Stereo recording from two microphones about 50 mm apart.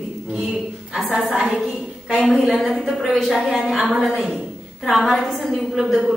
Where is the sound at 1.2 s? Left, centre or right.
Centre.